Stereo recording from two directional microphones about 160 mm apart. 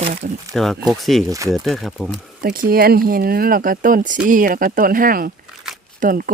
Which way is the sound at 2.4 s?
65° right (ahead or behind).